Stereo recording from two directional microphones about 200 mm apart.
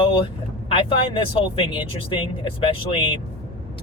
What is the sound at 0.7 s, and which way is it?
Speech, 25° left (ahead or behind).